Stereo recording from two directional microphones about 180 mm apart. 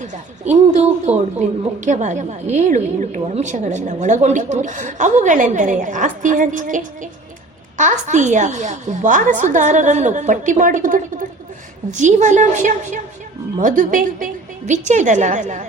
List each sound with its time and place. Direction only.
0.5 s a woman's voice: 40° right (ahead or behind)